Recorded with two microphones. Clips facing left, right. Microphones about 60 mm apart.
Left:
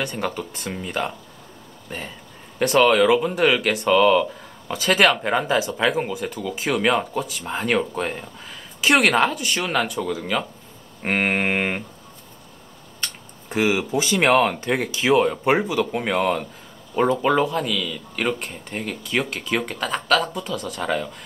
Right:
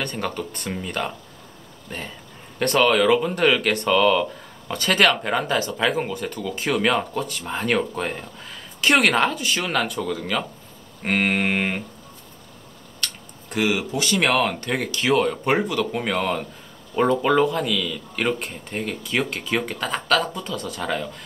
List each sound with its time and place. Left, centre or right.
0.0 s speech: centre
13.0 s tick-tock: left
14.2 s speech: centre